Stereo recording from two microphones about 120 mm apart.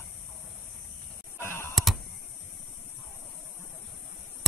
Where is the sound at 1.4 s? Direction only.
20° left (ahead or behind).